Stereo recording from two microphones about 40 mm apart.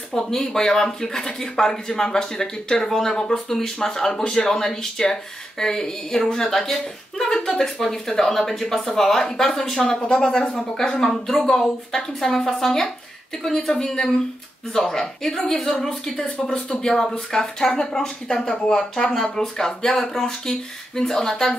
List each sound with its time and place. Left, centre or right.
0.1 s speech: centre
9.8 s speech: left